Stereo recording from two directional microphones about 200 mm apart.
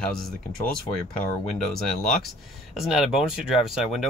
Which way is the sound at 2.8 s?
Centre (ahead or behind).